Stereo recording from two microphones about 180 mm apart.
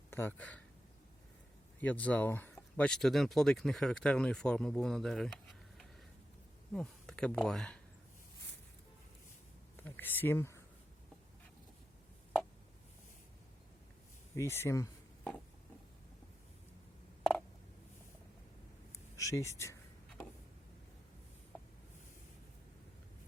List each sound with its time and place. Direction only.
0.1 s speech: 10° left (ahead or behind)
1.8 s speech: 10° left (ahead or behind)
9.7 s a sound: 10° left (ahead or behind)
14.3 s speech: 15° left (ahead or behind)
19.1 s speech: 15° left (ahead or behind)